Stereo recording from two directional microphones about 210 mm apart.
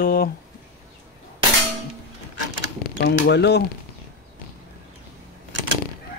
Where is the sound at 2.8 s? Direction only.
55° left (ahead or behind).